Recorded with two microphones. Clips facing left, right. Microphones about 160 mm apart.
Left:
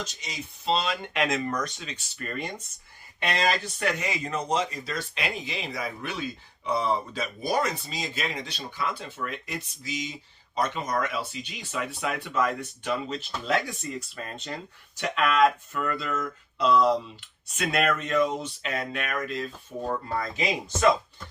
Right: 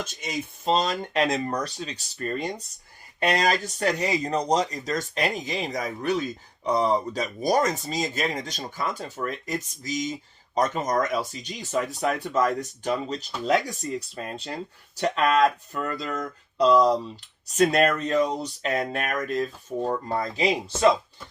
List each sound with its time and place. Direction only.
0.0 s speech: 50° right (ahead or behind)
20.1 s speech: 35° right (ahead or behind)